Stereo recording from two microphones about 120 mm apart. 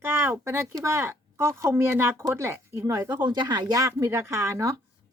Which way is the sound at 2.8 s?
30° right (ahead or behind).